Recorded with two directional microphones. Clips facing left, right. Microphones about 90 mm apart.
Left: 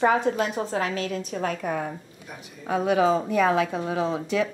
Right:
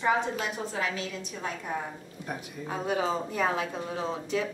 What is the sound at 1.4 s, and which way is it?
Speech, 65° left (ahead or behind).